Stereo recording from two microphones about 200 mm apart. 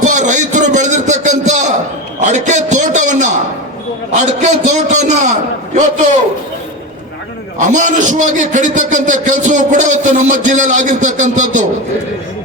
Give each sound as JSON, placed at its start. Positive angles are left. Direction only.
{"t": 0.0, "sound": "a sound", "side_deg": -40}
{"t": 4.1, "sound": "a man's voice", "side_deg": -35}
{"t": 7.7, "sound": "a man's voice", "side_deg": -40}